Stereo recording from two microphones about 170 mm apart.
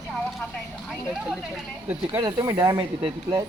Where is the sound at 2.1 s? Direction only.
25° right (ahead or behind).